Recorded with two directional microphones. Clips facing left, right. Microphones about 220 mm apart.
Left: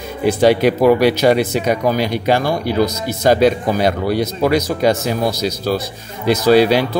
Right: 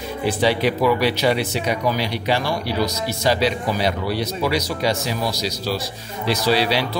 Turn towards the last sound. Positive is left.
turn(degrees=50)  # may be behind; listen again after turning